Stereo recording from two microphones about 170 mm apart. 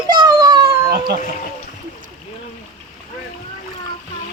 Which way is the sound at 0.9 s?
60° right (ahead or behind).